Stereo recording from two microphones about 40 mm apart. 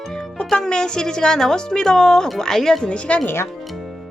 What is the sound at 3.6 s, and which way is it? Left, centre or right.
Music, centre.